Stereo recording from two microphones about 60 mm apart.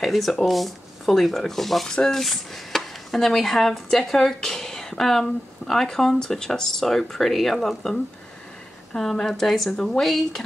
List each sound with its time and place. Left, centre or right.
0.0 s speech: centre
8.9 s speech: centre